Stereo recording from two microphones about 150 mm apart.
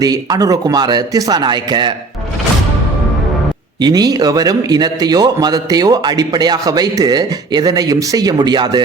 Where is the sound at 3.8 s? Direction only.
25° right (ahead or behind).